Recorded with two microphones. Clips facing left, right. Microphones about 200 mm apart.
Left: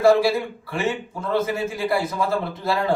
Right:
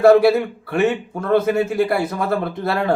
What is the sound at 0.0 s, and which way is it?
A man's voice, 60° right (ahead or behind).